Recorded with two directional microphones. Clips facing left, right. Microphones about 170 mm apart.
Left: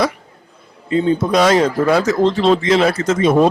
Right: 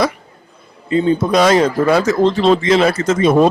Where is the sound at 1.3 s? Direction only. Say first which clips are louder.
Right 1 dB; 15° right (ahead or behind).